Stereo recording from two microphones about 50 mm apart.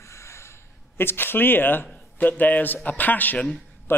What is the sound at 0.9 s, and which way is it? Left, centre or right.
A man's voice, left.